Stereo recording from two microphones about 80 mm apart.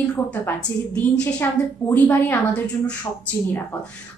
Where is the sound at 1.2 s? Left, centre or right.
Centre.